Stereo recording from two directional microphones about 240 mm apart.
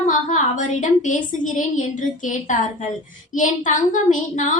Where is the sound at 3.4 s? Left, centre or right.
Left.